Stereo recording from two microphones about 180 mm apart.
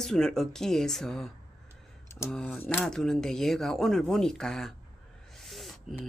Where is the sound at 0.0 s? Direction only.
5° left (ahead or behind).